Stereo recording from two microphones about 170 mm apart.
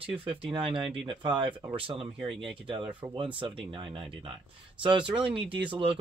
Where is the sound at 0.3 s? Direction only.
30° right (ahead or behind).